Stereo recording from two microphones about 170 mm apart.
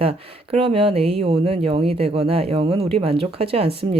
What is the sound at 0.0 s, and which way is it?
Speech, 35° right (ahead or behind).